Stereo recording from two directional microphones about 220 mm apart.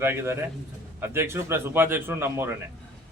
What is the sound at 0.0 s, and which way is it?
A man's voice, 10° right (ahead or behind).